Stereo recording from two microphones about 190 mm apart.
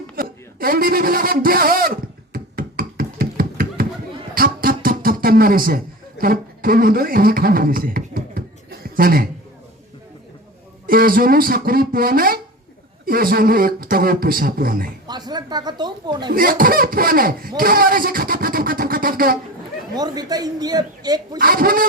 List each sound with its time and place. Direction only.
0.2 s speech: 50° right (ahead or behind)
2.3 s a sound: 50° right (ahead or behind)
10.8 s a man's voice: 50° right (ahead or behind)
15.0 s speech: 20° right (ahead or behind)
16.3 s a man's voice: 50° right (ahead or behind)
20.0 s a woman's voice: 20° right (ahead or behind)
21.3 s a man's voice: 50° right (ahead or behind)